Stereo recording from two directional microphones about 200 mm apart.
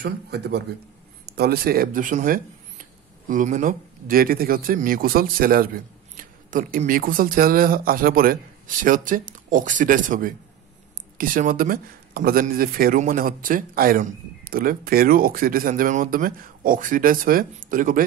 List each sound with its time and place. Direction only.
0.0 s speech: 55° right (ahead or behind)